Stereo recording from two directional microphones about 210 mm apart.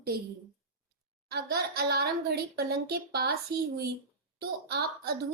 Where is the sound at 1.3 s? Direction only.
50° right (ahead or behind).